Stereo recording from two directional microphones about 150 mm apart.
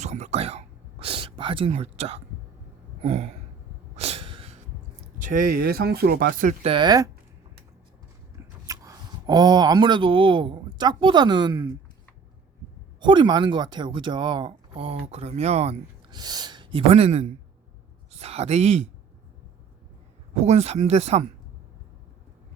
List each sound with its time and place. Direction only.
0.0 s a sound: 50° right (ahead or behind)
3.0 s speech: 45° right (ahead or behind)
3.9 s a sound: 45° right (ahead or behind)
5.2 s speech: 65° right (ahead or behind)
6.6 s speech: 35° right (ahead or behind)
8.6 s speech: 20° right (ahead or behind)
13.0 s speech: 30° right (ahead or behind)
16.0 s speech: 25° right (ahead or behind); by 18.9 s 45° right (ahead or behind)
20.3 s speech: 50° right (ahead or behind)